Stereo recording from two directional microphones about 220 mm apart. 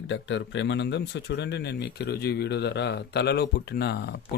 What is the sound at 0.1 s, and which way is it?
Speech, 55° left (ahead or behind).